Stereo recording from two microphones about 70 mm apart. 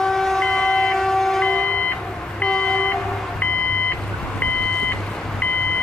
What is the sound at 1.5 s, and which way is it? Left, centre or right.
Beep, centre.